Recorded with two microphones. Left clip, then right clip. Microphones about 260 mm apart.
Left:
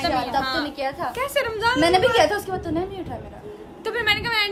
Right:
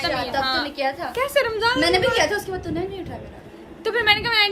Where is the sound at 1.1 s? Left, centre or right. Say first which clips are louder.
Right 3 dB; centre.